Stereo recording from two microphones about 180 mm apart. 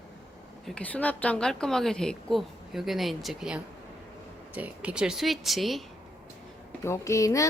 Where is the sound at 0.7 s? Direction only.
10° left (ahead or behind).